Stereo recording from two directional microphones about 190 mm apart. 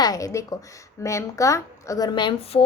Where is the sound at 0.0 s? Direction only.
15° left (ahead or behind).